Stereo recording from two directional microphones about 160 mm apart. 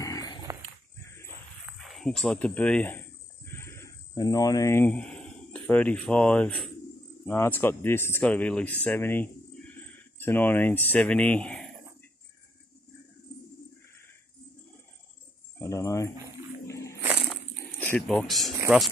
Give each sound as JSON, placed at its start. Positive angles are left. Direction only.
{"t": 0.0, "sound": "dog", "side_deg": 20}
{"t": 1.8, "sound": "speech", "side_deg": 0}
{"t": 3.4, "sound": "bird", "side_deg": 15}
{"t": 7.2, "sound": "speech", "side_deg": 10}
{"t": 15.6, "sound": "a sound", "side_deg": 20}
{"t": 17.7, "sound": "speech", "side_deg": 10}